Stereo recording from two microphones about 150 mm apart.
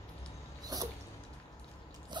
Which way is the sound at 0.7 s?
25° right (ahead or behind).